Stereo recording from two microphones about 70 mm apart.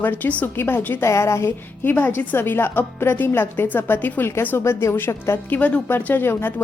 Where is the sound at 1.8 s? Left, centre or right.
Left.